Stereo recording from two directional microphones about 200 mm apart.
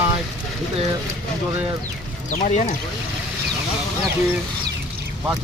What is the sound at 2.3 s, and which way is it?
Speech, 35° left (ahead or behind).